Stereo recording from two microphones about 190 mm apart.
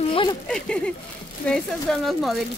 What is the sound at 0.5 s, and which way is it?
A woman's voice, 5° left (ahead or behind).